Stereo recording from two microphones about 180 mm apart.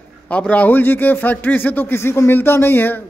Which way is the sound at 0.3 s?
5° left (ahead or behind).